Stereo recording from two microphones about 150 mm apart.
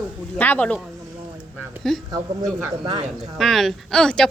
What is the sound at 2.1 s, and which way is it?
Speech, 25° right (ahead or behind).